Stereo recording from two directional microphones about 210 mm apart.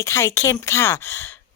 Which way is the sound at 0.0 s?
15° left (ahead or behind).